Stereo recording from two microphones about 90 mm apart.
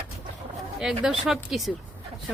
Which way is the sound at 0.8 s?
5° right (ahead or behind).